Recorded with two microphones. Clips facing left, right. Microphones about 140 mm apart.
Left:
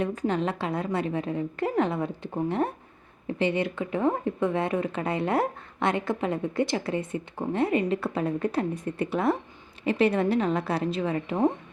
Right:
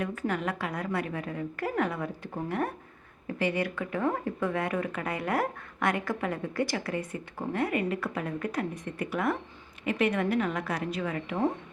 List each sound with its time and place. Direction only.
0.1 s speech: 20° left (ahead or behind)